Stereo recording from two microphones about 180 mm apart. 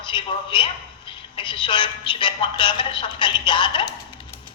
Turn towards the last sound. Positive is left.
turn(degrees=25)  # may be behind; listen again after turning